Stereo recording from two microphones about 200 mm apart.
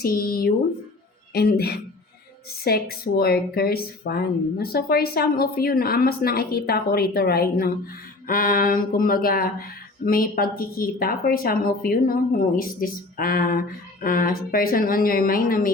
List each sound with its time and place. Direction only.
0.0 s speech: 50° left (ahead or behind)